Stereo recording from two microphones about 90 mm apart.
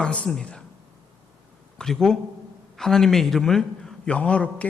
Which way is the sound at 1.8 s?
5° left (ahead or behind).